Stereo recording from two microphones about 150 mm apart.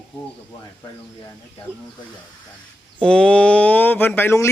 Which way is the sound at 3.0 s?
5° left (ahead or behind).